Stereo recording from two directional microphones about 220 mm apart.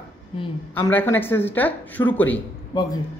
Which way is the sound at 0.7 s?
10° left (ahead or behind).